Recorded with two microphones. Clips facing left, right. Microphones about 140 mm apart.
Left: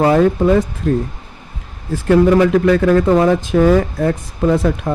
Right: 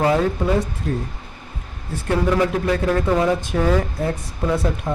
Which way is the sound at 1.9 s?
90° left.